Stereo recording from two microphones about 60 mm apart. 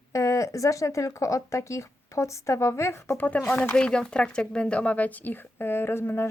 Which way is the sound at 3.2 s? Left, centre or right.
Left.